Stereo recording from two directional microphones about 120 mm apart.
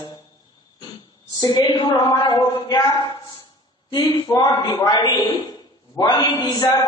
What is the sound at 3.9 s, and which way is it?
A man's voice, 35° left (ahead or behind).